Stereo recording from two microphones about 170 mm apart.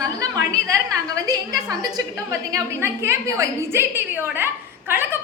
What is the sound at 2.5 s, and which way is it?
A woman's voice, 15° right (ahead or behind).